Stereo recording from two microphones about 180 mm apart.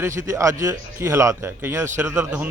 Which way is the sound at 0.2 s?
15° right (ahead or behind).